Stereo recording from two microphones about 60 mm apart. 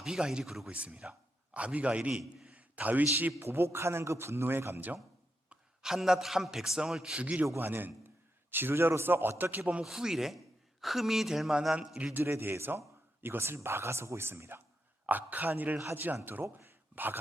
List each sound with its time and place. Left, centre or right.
0.0 s a man's voice: centre; by 3.3 s right
3.4 s speech: right
5.5 s a man's voice: centre
7.2 s speech: right
7.6 s a man's voice: right
9.8 s a man's voice: centre
12.1 s a man's voice: right
15.0 s a man's voice: right
16.9 s a sound: right